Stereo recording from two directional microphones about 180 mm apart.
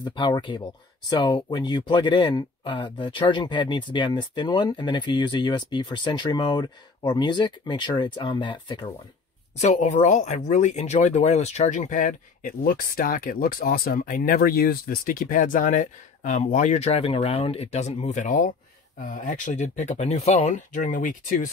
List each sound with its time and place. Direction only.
0.0 s speech: 25° left (ahead or behind)
9.6 s speech: 40° left (ahead or behind)